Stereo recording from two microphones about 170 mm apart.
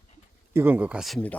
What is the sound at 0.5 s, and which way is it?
Speech, 10° right (ahead or behind).